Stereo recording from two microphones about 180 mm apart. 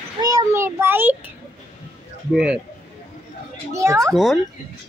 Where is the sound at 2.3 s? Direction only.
5° right (ahead or behind).